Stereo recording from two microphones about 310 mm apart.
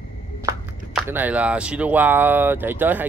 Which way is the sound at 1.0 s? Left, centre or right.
Centre.